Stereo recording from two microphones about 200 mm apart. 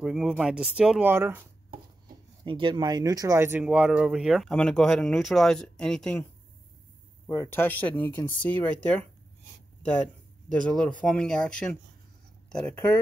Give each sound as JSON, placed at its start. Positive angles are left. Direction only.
{"t": 0.0, "sound": "speech", "side_deg": -5}
{"t": 2.4, "sound": "speech", "side_deg": -25}
{"t": 7.2, "sound": "speech", "side_deg": 15}
{"t": 10.5, "sound": "speech", "side_deg": 5}